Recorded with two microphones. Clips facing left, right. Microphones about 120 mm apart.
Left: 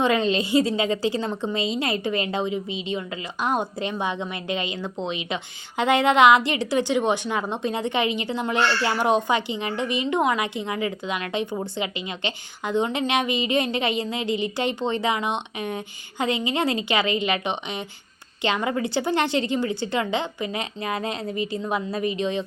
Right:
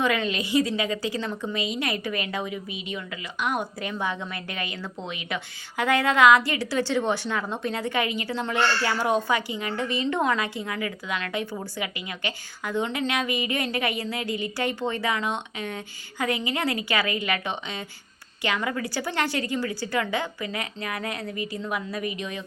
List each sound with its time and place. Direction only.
0.0 s a woman's voice: 30° left (ahead or behind)